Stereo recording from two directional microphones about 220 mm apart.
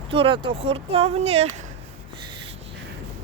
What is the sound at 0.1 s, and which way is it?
Speech, 25° right (ahead or behind).